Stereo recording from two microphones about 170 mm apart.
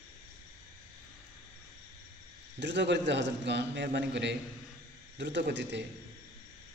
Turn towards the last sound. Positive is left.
turn(degrees=-90)